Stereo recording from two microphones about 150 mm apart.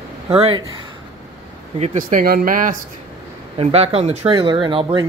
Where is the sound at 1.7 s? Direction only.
55° right (ahead or behind).